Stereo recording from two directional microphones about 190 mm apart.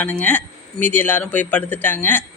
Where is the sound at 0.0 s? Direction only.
10° left (ahead or behind).